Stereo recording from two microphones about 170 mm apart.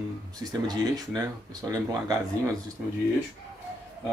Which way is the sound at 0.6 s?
25° right (ahead or behind).